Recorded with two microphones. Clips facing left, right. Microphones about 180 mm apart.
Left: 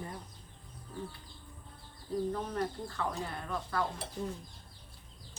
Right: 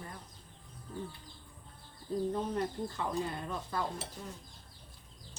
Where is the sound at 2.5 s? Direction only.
20° right (ahead or behind).